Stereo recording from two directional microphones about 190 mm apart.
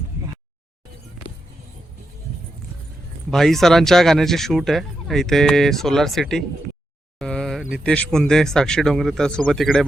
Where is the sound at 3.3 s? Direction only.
Centre (ahead or behind).